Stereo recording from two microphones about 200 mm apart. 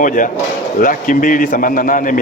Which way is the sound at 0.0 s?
40° left (ahead or behind).